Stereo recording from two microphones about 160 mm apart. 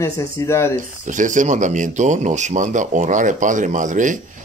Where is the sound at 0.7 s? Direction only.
50° right (ahead or behind).